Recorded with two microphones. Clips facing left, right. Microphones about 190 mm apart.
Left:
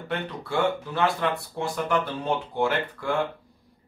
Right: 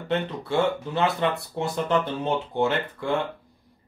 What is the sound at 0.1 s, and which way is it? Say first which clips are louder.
Speech: right 4 dB; 25° right (ahead or behind).